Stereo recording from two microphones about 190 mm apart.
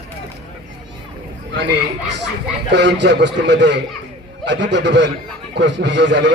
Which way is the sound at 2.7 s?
65° right (ahead or behind).